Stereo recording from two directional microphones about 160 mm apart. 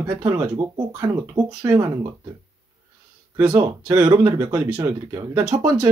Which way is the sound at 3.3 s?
15° right (ahead or behind).